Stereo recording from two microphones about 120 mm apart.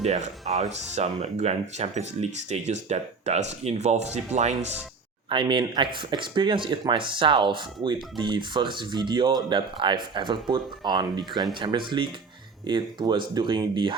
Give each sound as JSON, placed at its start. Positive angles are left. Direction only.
{"t": 0.0, "sound": "speech", "side_deg": -70}
{"t": 5.3, "sound": "speech", "side_deg": -45}